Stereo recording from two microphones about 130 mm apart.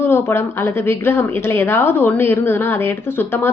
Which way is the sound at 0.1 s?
20° left (ahead or behind).